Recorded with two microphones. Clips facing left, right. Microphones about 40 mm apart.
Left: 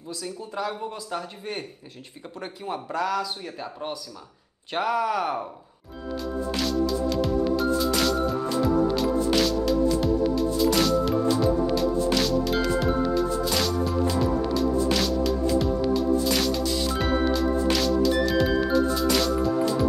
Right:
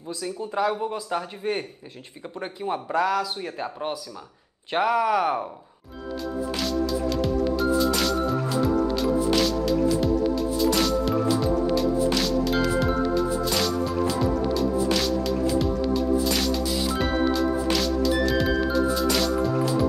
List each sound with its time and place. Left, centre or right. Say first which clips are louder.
0.1 s speech: right 4 dB; centre
6.5 s music: left 1 dB; centre